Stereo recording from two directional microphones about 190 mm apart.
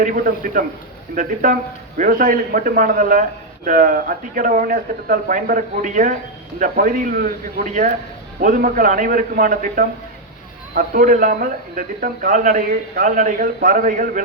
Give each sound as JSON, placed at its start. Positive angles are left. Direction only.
{"t": 0.0, "sound": "a man's voice", "side_deg": -45}